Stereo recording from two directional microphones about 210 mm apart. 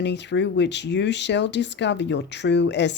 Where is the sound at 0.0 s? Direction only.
55° left (ahead or behind).